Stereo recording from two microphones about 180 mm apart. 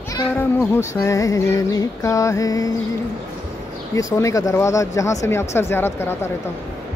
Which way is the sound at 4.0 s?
15° left (ahead or behind).